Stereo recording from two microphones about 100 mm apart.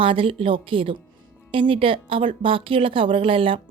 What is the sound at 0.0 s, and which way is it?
Speech, 65° right (ahead or behind).